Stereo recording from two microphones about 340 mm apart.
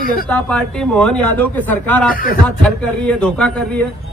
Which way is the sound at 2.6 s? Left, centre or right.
Centre.